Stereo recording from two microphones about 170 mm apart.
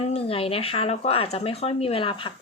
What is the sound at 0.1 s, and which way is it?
Speech, 35° left (ahead or behind).